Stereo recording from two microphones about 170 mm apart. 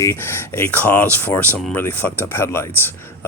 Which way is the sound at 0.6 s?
10° left (ahead or behind).